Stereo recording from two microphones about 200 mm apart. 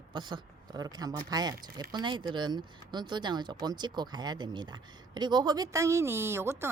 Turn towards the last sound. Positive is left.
turn(degrees=-15)  # may be behind; listen again after turning